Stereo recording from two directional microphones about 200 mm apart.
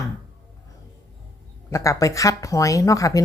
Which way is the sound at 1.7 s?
15° left (ahead or behind).